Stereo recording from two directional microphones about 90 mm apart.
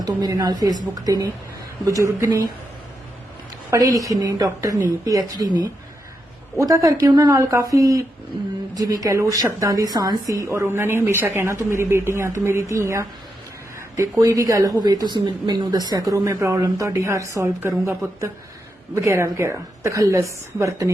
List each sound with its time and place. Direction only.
0.2 s a woman's voice: 50° right (ahead or behind)
3.7 s speech: 40° right (ahead or behind)
6.6 s a woman's voice: 40° right (ahead or behind)
7.0 s speech: 50° right (ahead or behind)
7.5 s a woman's voice: 35° right (ahead or behind)